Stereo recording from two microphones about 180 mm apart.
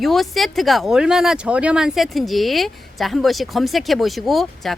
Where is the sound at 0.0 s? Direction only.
Centre (ahead or behind).